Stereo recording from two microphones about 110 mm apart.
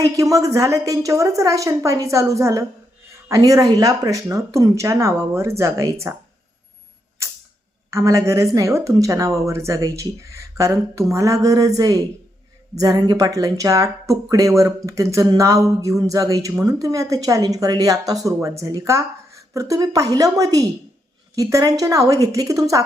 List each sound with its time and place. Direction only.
0.0 s speech: 30° right (ahead or behind)
7.9 s speech: 30° right (ahead or behind)